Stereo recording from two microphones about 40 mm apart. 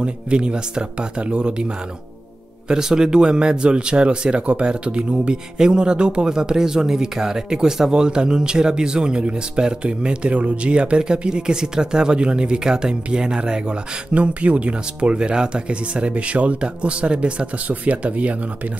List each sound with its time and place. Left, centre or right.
0.0 s speech: right
2.7 s speech: centre; by 18.4 s right